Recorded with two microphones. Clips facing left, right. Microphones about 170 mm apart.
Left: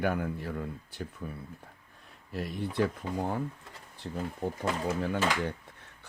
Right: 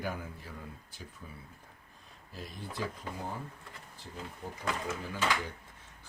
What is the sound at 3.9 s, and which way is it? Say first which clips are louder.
Speech: left 10 dB; 65° left (ahead or behind).